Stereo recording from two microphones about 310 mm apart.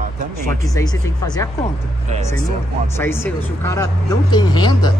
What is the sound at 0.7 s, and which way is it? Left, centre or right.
Speech, centre.